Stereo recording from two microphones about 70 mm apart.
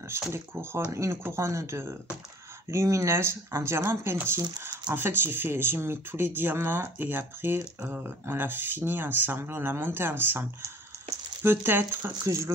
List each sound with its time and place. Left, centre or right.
0.3 s speech: right
11.4 s speech: right